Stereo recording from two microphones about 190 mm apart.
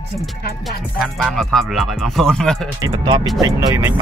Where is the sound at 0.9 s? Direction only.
Centre (ahead or behind).